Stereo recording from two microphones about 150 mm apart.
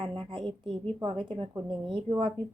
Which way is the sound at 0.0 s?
30° right (ahead or behind).